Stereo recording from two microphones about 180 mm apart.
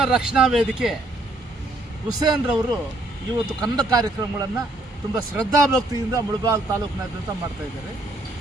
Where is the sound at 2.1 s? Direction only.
20° right (ahead or behind).